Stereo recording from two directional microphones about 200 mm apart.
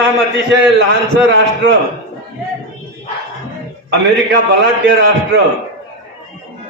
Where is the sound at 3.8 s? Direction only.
60° right (ahead or behind).